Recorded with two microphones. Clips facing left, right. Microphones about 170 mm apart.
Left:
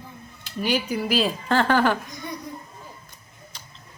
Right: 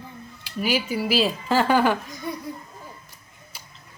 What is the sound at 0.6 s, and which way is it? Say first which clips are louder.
A child's voice: even; 5° right (ahead or behind).